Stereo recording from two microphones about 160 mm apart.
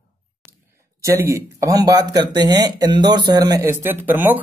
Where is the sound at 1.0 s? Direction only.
20° right (ahead or behind).